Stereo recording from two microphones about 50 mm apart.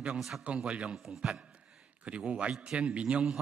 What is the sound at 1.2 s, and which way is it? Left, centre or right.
A man's voice, centre.